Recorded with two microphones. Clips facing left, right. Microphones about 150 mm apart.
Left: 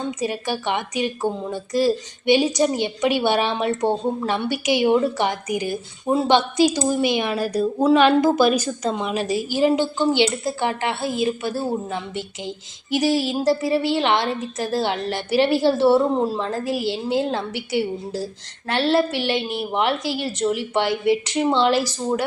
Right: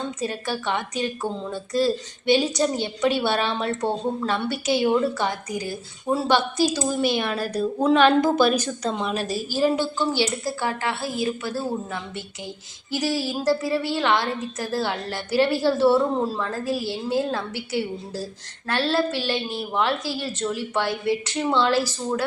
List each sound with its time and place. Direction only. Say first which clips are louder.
0.2 s a woman's voice: left 3 dB; 15° left (ahead or behind)